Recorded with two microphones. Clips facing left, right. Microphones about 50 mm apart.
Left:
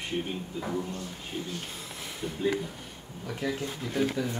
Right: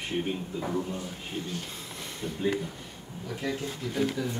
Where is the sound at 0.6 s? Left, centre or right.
Centre.